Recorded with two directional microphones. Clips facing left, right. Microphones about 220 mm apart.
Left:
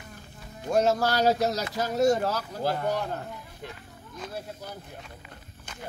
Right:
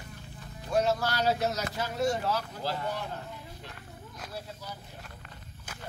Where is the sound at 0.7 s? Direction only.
45° left (ahead or behind).